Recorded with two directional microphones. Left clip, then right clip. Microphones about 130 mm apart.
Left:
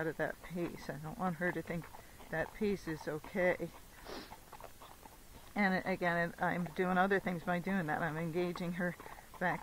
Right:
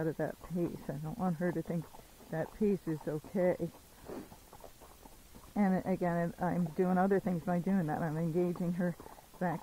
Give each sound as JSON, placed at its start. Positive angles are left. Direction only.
{"t": 0.0, "sound": "speech", "side_deg": 25}
{"t": 5.5, "sound": "speech", "side_deg": 25}